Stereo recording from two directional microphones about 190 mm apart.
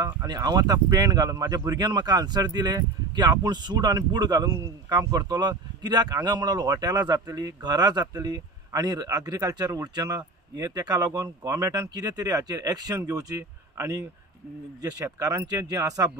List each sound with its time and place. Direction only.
0.0 s speech: 20° right (ahead or behind)